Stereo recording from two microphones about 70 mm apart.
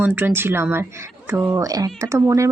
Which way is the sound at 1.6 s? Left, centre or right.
Right.